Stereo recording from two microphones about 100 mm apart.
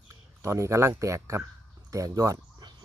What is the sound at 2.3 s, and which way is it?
Cricket, 50° right (ahead or behind).